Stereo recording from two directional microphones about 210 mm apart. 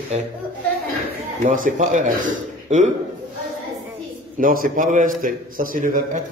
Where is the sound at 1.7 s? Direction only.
35° right (ahead or behind).